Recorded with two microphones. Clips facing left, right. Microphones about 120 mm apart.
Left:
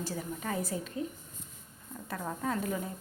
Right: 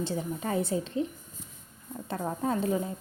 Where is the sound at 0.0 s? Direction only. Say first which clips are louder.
Right 5 dB; 25° right (ahead or behind).